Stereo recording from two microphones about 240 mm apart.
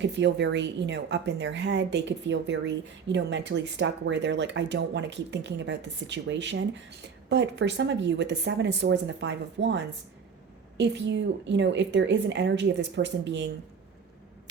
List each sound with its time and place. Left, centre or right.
0.0 s a woman's voice: right